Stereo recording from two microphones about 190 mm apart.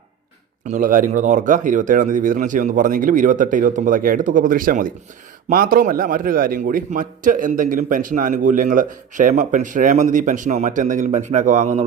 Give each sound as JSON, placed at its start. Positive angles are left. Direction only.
{"t": 0.7, "sound": "a man's voice", "side_deg": -45}